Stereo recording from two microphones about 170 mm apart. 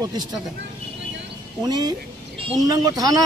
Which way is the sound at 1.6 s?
25° right (ahead or behind).